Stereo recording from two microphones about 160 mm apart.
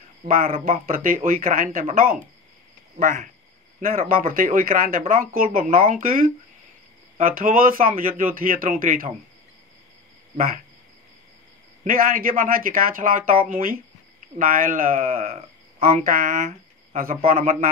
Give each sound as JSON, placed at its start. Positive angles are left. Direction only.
{"t": 0.2, "sound": "speech", "side_deg": -60}
{"t": 11.8, "sound": "speech", "side_deg": -60}